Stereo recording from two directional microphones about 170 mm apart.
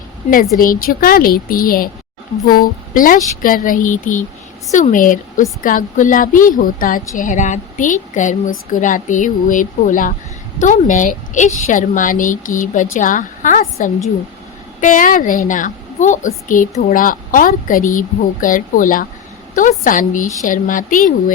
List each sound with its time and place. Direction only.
0.6 s a woman's voice: 55° left (ahead or behind)